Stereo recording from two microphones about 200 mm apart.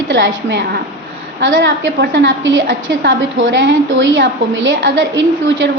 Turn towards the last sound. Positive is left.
turn(degrees=-65)  # may be behind; listen again after turning